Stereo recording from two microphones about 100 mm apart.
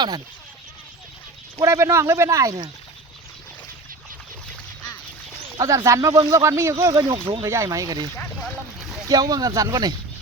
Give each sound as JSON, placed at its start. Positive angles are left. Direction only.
{"t": 1.5, "sound": "speech", "side_deg": -30}
{"t": 5.5, "sound": "speech", "side_deg": -30}
{"t": 8.1, "sound": "speech", "side_deg": 20}
{"t": 8.4, "sound": "a sound", "side_deg": 0}
{"t": 9.0, "sound": "speech", "side_deg": -40}